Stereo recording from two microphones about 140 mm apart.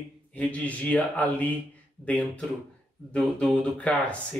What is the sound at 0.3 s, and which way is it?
Speech, 10° left (ahead or behind).